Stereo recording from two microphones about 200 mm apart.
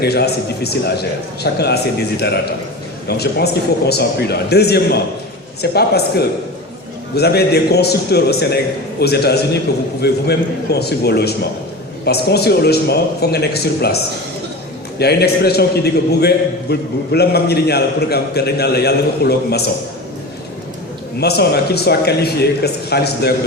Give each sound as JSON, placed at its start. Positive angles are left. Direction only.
{"t": 0.0, "sound": "a man's voice", "side_deg": 55}
{"t": 21.2, "sound": "a man's voice", "side_deg": 55}